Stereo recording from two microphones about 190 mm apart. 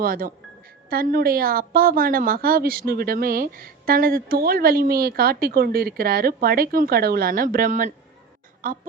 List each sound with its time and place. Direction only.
0.0 s a woman's voice: 50° right (ahead or behind)